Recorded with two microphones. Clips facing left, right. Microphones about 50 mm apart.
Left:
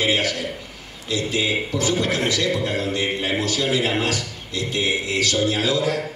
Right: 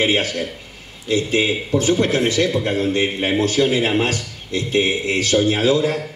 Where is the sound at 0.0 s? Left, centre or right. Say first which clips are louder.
Right 2 dB; right.